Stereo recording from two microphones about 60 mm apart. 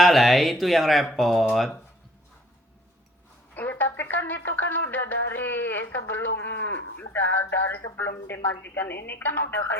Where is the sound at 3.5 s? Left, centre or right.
Left.